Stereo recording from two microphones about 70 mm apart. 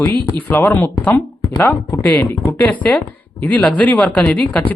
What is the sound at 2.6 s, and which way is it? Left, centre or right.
Speech, left.